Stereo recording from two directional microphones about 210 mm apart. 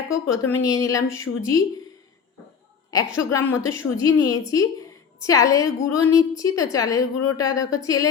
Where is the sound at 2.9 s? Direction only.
15° left (ahead or behind).